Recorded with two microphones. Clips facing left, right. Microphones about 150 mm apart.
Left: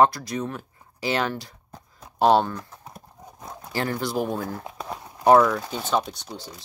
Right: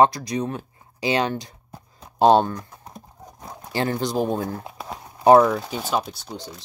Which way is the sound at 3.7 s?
20° right (ahead or behind).